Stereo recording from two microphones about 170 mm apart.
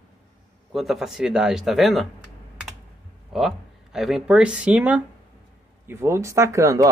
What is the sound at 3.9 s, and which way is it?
Speech, 5° right (ahead or behind).